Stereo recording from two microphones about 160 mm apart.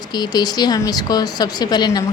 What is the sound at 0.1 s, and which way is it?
A woman's voice, 25° left (ahead or behind).